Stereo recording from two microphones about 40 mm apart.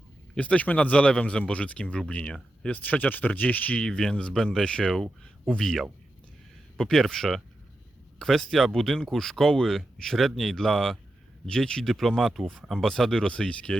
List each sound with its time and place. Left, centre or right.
0.3 s speech: left
2.7 s speech: left
3.8 s speech: centre
6.7 s speech: centre
11.4 s speech: centre
11.9 s speech: centre
13.2 s speech: left